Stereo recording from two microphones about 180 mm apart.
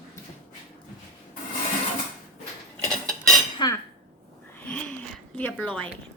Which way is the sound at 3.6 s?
25° left (ahead or behind).